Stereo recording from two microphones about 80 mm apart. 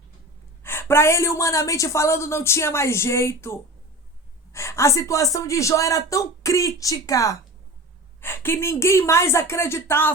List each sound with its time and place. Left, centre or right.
0.6 s a woman's voice: left
8.2 s a woman's voice: left